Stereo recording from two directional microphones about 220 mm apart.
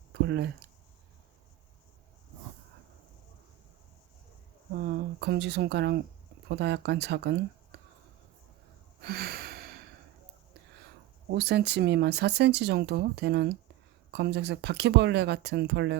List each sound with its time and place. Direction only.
0.1 s a sound: 50° right (ahead or behind)
4.8 s speech: 45° right (ahead or behind)
9.0 s gasp: 45° right (ahead or behind)
11.3 s speech: 45° right (ahead or behind)